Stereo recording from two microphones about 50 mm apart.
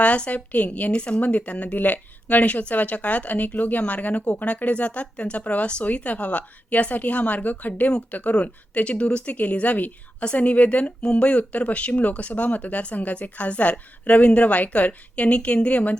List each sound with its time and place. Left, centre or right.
0.0 s a woman's voice: left